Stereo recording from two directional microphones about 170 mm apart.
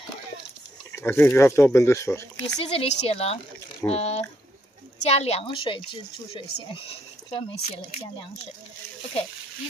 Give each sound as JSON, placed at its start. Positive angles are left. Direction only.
{"t": 0.9, "sound": "speech", "side_deg": 15}
{"t": 2.4, "sound": "speech", "side_deg": 35}